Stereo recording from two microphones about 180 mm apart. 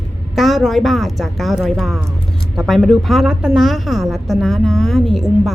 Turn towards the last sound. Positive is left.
turn(degrees=0)  # may be behind; listen again after turning